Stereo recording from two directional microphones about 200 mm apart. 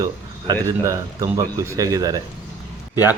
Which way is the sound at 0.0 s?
20° right (ahead or behind).